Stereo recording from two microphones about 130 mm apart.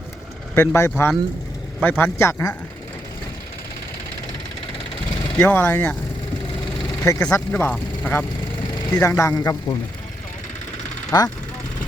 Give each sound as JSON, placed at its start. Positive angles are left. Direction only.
{"t": 0.5, "sound": "a man's voice", "side_deg": 20}
{"t": 5.4, "sound": "speech", "side_deg": 15}
{"t": 7.1, "sound": "a man's voice", "side_deg": 25}
{"t": 7.5, "sound": "a man's voice", "side_deg": 10}
{"t": 11.1, "sound": "speech", "side_deg": 30}